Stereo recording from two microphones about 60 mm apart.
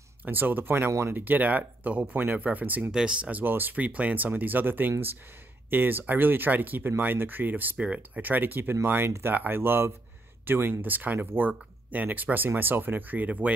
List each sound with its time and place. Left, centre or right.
0.2 s speech: right
2.9 s speech: centre; by 7.7 s right
7.7 s speech: centre
8.2 s speech: right